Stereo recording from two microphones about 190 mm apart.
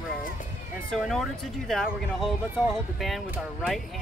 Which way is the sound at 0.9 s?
Centre (ahead or behind).